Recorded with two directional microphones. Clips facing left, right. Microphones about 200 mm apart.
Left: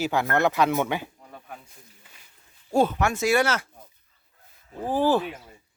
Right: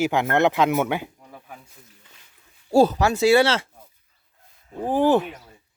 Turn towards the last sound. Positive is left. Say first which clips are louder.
# right 3 dB
turn(degrees=-20)  # may be behind; listen again after turning